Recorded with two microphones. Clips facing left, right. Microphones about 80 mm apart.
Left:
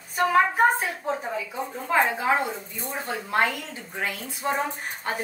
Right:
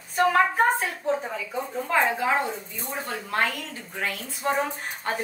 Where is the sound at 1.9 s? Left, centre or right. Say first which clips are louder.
Left 1 dB; centre.